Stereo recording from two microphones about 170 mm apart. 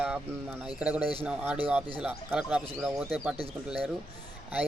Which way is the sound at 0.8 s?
5° right (ahead or behind).